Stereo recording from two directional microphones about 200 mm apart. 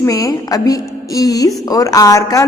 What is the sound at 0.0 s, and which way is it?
A woman's voice, 15° left (ahead or behind).